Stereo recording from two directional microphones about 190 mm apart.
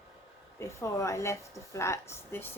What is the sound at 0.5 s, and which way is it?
Speech, 15° left (ahead or behind).